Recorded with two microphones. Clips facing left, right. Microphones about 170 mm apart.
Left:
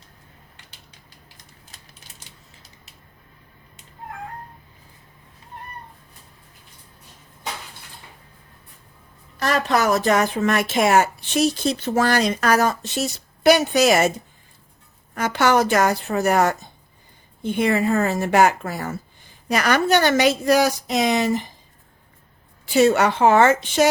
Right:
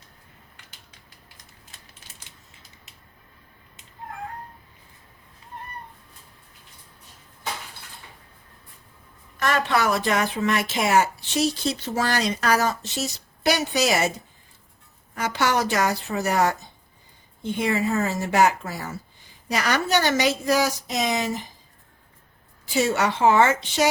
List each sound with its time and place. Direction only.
9.4 s speech: 35° left (ahead or behind)
15.1 s a woman's voice: 50° left (ahead or behind)
22.6 s a woman's voice: 60° left (ahead or behind)